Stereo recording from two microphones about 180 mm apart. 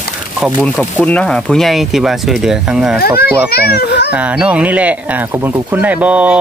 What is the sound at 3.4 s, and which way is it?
Speech, 60° left (ahead or behind).